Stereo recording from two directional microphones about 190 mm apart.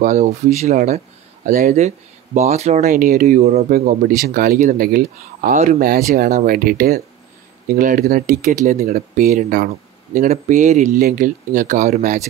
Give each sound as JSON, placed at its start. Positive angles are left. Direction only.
{"t": 0.0, "sound": "speech", "side_deg": -40}
{"t": 3.7, "sound": "speech", "side_deg": -50}
{"t": 5.6, "sound": "speech", "side_deg": -35}
{"t": 5.9, "sound": "speech", "side_deg": -50}